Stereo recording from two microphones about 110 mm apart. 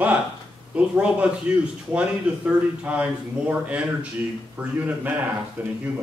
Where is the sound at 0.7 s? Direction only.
10° right (ahead or behind).